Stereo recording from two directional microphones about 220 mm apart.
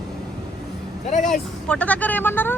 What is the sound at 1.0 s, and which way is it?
Speech, 35° left (ahead or behind).